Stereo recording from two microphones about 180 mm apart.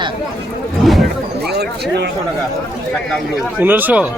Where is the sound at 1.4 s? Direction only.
65° right (ahead or behind).